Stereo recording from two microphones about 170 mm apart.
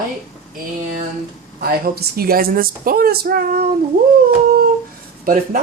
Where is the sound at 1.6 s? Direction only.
65° right (ahead or behind).